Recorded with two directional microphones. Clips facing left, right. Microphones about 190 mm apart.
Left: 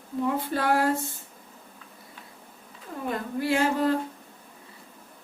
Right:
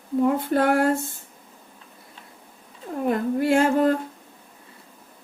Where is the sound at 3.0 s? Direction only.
50° right (ahead or behind).